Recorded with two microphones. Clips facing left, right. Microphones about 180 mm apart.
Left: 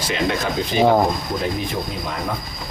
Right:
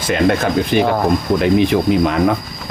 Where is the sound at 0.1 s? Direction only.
55° right (ahead or behind).